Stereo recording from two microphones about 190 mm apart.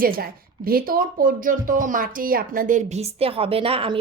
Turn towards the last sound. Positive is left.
turn(degrees=-30)  # may be behind; listen again after turning